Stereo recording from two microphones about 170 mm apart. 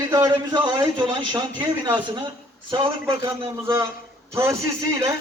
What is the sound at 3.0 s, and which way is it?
A man's voice, 15° right (ahead or behind).